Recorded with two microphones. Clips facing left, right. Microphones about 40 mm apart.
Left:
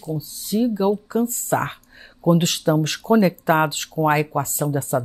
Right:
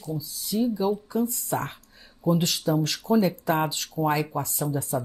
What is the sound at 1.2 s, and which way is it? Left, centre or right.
Speech, left.